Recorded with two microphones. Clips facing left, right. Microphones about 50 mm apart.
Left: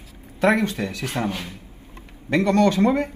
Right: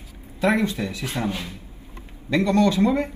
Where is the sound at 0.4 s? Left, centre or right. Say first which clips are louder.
Left 2 dB; left.